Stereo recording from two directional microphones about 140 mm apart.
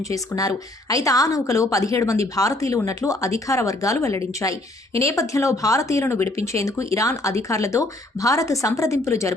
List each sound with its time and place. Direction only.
0.1 s speech: 25° left (ahead or behind)